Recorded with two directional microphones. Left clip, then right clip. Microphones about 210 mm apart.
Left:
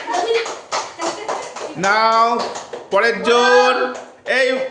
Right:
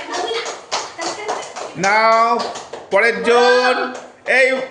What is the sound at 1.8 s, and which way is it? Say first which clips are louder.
A man's voice: right 1 dB; 5° right (ahead or behind).